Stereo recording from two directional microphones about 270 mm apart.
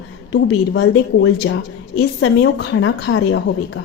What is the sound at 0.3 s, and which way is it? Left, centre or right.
A woman's voice, left.